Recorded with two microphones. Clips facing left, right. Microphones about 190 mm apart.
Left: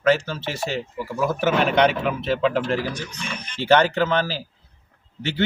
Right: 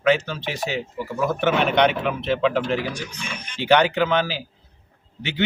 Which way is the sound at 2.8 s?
15° right (ahead or behind).